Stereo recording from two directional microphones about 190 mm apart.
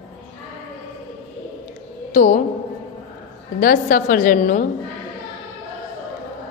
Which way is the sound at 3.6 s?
45° left (ahead or behind).